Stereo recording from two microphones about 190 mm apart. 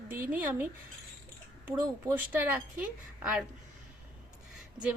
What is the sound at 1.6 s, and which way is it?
A woman's voice, 10° right (ahead or behind).